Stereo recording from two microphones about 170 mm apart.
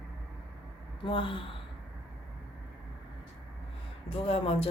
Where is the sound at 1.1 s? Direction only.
30° left (ahead or behind).